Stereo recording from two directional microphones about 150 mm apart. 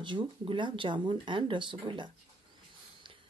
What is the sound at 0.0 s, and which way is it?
Speech, 30° right (ahead or behind).